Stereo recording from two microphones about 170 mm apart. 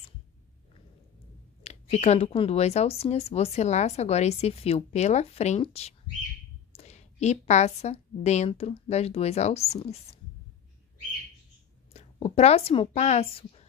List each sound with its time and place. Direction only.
1.6 s a woman's voice: 40° left (ahead or behind)
11.9 s a woman's voice: 40° left (ahead or behind)